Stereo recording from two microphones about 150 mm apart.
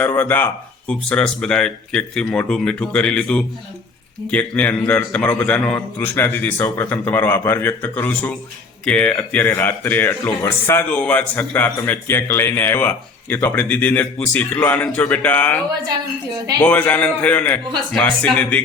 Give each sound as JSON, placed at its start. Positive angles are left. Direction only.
{"t": 0.0, "sound": "speech", "side_deg": 15}